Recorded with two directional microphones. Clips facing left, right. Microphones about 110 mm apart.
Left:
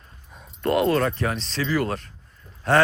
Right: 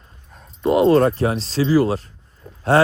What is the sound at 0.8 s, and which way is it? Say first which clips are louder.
Speech: right 8 dB; 30° right (ahead or behind).